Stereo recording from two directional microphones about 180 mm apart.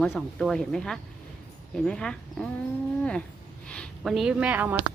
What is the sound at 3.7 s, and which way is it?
A woman's voice, 5° left (ahead or behind).